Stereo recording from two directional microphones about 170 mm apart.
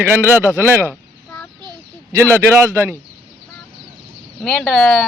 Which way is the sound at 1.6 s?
25° right (ahead or behind).